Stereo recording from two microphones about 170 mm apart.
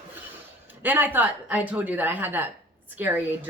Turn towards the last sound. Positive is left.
turn(degrees=-10)  # may be behind; listen again after turning